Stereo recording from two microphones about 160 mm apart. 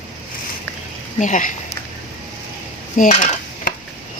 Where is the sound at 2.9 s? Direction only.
55° left (ahead or behind).